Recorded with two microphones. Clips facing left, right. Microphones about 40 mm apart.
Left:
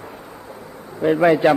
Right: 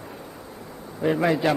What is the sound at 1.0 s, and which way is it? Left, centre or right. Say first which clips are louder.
Speech: left 7 dB; centre.